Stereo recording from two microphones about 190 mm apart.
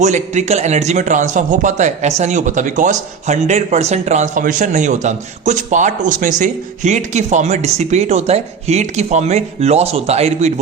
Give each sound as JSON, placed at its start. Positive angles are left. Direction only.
{"t": 0.0, "sound": "a man's voice", "side_deg": -40}